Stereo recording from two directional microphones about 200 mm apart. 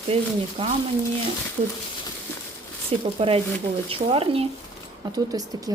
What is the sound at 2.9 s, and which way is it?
Speech, 30° right (ahead or behind).